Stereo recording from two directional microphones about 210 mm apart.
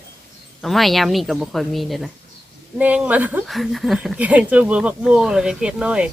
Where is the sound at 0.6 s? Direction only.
Centre (ahead or behind).